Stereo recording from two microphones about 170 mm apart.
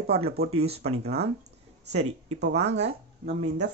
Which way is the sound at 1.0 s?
70° right (ahead or behind).